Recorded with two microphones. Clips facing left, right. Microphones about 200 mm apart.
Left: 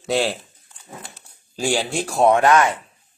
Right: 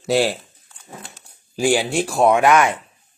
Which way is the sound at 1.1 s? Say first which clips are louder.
Right 5 dB; 10° right (ahead or behind).